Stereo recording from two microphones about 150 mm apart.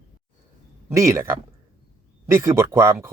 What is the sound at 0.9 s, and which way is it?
Speech, 20° right (ahead or behind).